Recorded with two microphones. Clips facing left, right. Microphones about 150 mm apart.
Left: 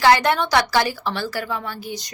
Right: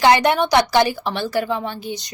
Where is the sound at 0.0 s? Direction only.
20° right (ahead or behind).